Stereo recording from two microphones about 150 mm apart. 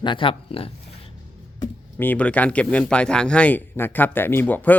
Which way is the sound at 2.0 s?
10° left (ahead or behind).